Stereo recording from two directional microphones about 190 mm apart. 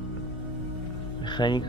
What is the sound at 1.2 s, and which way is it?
Music, 25° left (ahead or behind).